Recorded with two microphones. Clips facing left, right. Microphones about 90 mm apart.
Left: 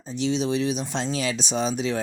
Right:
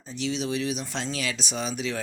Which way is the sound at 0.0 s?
25° left (ahead or behind).